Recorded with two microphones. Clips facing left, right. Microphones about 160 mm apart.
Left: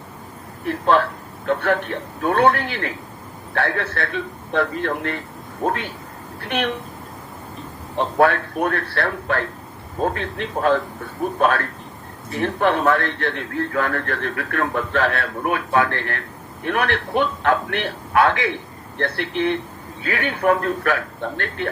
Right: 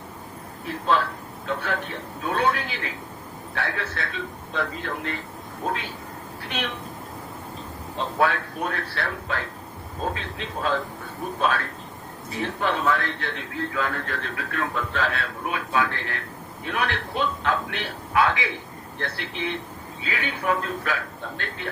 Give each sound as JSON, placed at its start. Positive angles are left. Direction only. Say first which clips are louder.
{"t": 0.6, "sound": "a man's voice", "louder": "left 6 dB", "side_deg": 60}
{"t": 6.4, "sound": "speech", "louder": "left 7 dB", "side_deg": 60}
{"t": 7.9, "sound": "a man's voice", "louder": "left 6 dB", "side_deg": 60}